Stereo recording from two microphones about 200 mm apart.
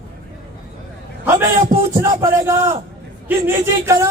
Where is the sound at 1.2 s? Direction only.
10° right (ahead or behind).